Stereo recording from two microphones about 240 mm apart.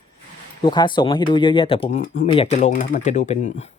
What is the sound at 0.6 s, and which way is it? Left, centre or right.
Speech, centre.